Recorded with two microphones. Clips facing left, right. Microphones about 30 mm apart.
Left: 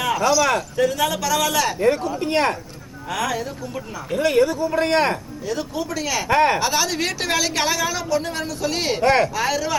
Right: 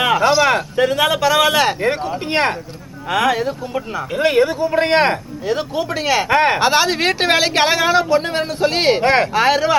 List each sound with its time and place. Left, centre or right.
0.0 s speech: right